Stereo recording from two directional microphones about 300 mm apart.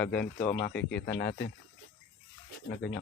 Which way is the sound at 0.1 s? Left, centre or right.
Left.